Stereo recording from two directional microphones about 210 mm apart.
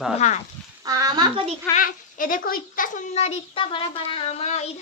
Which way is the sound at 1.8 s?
40° left (ahead or behind).